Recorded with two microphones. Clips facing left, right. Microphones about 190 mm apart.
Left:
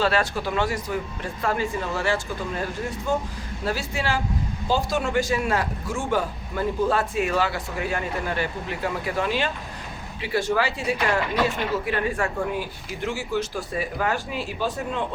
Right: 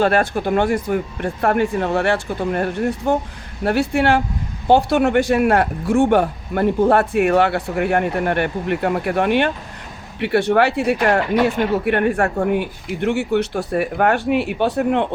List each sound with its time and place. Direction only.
0.0 s speech: 55° right (ahead or behind)